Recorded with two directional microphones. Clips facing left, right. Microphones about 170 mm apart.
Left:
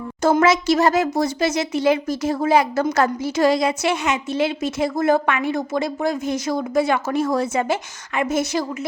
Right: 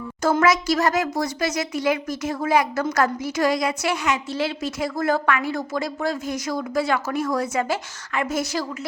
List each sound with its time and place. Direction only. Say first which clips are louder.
0.2 s a woman's voice: left 3 dB; 25° left (ahead or behind)